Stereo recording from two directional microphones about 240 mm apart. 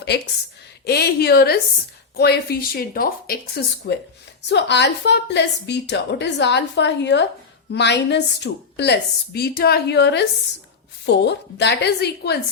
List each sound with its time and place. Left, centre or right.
0.9 s a woman's voice: left